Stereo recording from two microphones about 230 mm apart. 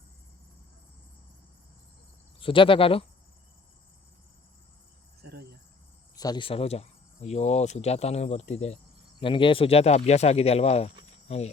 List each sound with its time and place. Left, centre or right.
2.4 s speech: left
5.2 s cricket: right
6.1 s speech: centre